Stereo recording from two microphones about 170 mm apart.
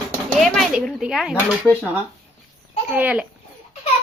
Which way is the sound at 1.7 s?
10° left (ahead or behind).